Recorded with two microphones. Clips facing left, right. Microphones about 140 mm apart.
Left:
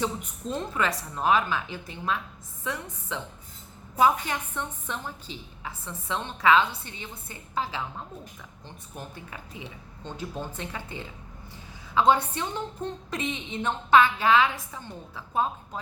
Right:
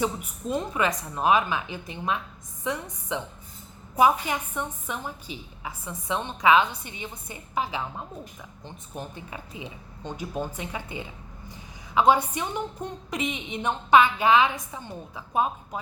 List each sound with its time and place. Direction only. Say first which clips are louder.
0.0 s a woman's voice: right 2 dB; 10° right (ahead or behind)